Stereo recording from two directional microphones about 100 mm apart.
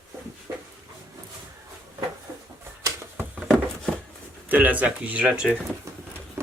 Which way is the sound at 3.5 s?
5° left (ahead or behind).